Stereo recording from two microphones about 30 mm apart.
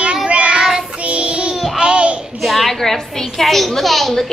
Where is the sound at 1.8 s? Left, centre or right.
Right.